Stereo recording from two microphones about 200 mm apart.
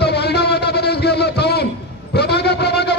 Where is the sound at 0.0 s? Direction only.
55° left (ahead or behind).